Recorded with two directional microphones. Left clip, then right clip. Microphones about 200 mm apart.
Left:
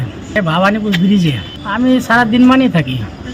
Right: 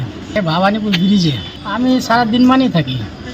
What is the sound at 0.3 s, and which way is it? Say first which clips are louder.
A man's voice: left 2 dB; 5° left (ahead or behind).